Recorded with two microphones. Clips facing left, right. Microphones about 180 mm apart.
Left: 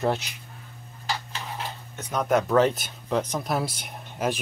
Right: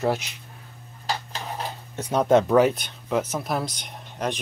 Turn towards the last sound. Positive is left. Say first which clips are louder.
# left 1 dB
turn(degrees=5)  # may be behind; listen again after turning